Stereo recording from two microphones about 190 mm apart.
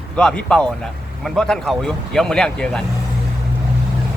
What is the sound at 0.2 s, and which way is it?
Speech, 5° left (ahead or behind).